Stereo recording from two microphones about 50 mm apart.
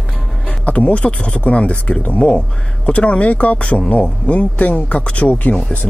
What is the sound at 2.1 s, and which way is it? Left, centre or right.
Speech, centre.